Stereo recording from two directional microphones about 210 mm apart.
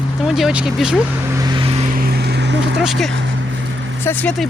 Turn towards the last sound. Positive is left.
turn(degrees=5)  # may be behind; listen again after turning